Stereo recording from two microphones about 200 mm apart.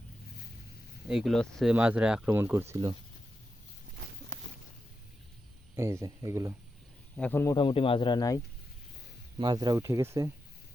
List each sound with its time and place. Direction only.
1.0 s speech: centre (ahead or behind)
5.7 s speech: 15° right (ahead or behind)
7.2 s speech: 10° left (ahead or behind)
7.5 s speech: 25° left (ahead or behind)
9.4 s speech: 20° right (ahead or behind)